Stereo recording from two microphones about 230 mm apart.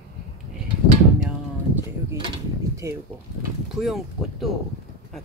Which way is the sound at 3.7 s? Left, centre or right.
Centre.